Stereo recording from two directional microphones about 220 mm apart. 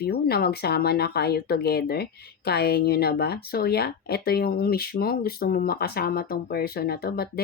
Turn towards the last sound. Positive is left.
turn(degrees=45)  # may be behind; listen again after turning